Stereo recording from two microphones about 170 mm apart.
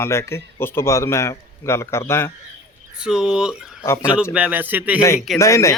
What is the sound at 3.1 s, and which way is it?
Speech, 5° right (ahead or behind).